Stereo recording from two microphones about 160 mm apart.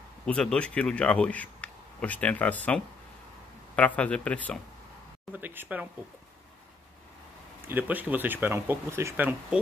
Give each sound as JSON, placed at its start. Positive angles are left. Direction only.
{"t": 0.3, "sound": "speech", "side_deg": 5}
{"t": 5.3, "sound": "speech", "side_deg": -10}
{"t": 7.6, "sound": "speech", "side_deg": -10}